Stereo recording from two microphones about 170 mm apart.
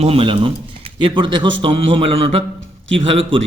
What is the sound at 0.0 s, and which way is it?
A man's voice, 35° right (ahead or behind).